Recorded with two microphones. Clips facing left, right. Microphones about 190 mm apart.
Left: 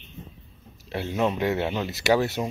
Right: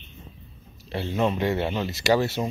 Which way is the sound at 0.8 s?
10° left (ahead or behind).